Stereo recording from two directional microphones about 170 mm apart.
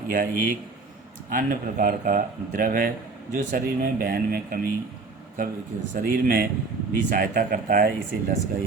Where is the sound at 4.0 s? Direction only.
60° right (ahead or behind).